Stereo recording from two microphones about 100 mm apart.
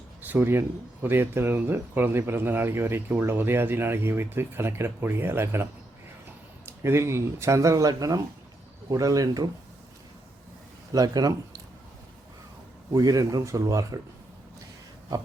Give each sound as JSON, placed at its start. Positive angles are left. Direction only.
{"t": 0.2, "sound": "speech", "side_deg": -20}
{"t": 6.7, "sound": "speech", "side_deg": -25}
{"t": 10.9, "sound": "speech", "side_deg": -40}
{"t": 12.9, "sound": "speech", "side_deg": -35}